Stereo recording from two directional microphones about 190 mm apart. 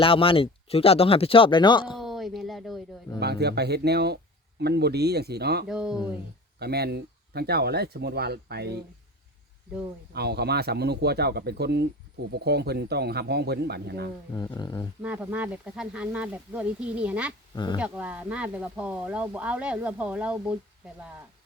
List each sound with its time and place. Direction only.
0.0 s speech: 30° left (ahead or behind)
2.0 s a sound: centre (ahead or behind)
3.2 s speech: 60° right (ahead or behind)
5.6 s speech: 5° right (ahead or behind)
6.6 s speech: 55° right (ahead or behind)
10.1 s speech: 60° right (ahead or behind)
14.3 s speech: 20° left (ahead or behind)
15.0 s speech: 10° right (ahead or behind)
17.5 s speech: 25° left (ahead or behind)
17.7 s speech: 5° right (ahead or behind)